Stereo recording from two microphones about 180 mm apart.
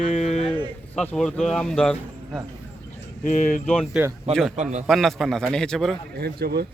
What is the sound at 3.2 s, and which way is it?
Mantra, 45° left (ahead or behind).